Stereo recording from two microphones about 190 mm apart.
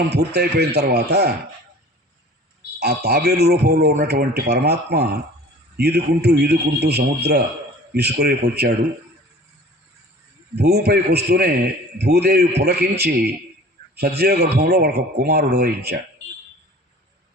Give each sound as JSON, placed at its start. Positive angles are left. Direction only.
{"t": 0.1, "sound": "a man's voice", "side_deg": -60}
{"t": 2.7, "sound": "a man's voice", "side_deg": -55}
{"t": 10.5, "sound": "a man's voice", "side_deg": -60}